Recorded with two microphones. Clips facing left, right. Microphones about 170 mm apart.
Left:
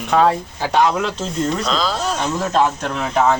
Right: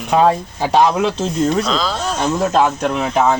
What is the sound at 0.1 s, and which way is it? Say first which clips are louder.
Speech: right 2 dB; 20° right (ahead or behind).